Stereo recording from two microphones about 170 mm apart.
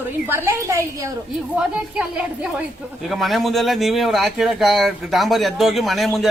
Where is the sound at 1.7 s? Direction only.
5° right (ahead or behind).